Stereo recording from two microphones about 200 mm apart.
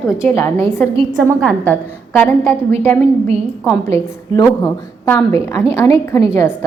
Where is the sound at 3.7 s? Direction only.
15° left (ahead or behind).